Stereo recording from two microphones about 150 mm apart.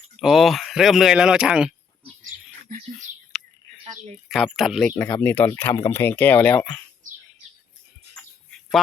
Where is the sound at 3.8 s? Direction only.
50° right (ahead or behind).